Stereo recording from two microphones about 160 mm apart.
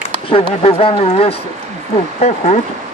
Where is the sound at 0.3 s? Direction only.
35° left (ahead or behind).